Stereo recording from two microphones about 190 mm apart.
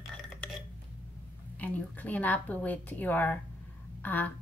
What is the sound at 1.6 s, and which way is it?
A woman's voice, 10° left (ahead or behind).